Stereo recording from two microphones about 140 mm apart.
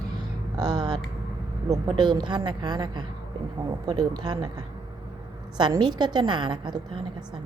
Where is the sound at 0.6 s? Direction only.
30° right (ahead or behind).